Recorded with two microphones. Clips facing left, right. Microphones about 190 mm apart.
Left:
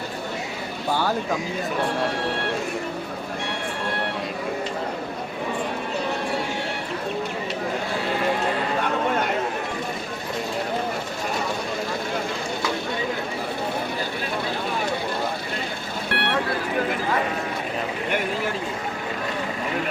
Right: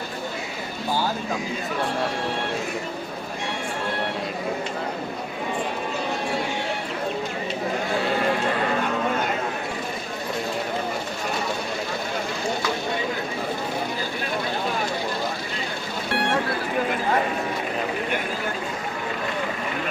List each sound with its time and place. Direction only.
16.0 s vehicle: 65° left (ahead or behind)